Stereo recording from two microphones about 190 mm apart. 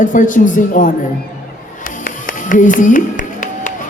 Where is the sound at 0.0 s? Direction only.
45° left (ahead or behind).